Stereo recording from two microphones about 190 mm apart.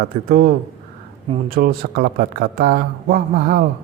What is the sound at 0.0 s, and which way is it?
Speech, 50° right (ahead or behind).